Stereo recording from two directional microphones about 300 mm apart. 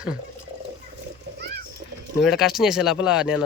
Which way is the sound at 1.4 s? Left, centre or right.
Right.